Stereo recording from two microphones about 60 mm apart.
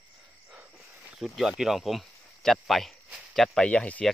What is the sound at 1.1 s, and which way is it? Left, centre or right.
Speech, centre.